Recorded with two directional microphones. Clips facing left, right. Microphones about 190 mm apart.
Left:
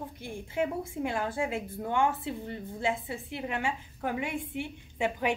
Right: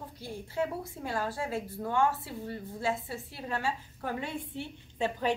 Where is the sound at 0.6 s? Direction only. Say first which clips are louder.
Left 3 dB; 15° left (ahead or behind).